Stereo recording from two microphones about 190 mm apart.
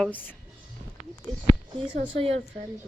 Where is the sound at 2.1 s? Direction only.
30° right (ahead or behind).